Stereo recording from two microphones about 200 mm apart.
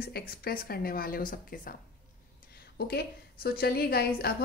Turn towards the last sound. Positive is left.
turn(degrees=50)  # may be behind; listen again after turning